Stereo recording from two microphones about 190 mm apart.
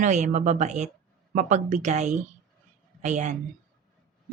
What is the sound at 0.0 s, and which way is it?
A woman's voice, 40° right (ahead or behind).